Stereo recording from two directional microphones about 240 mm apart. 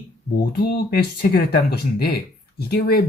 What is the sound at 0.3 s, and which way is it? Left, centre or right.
Speech, left.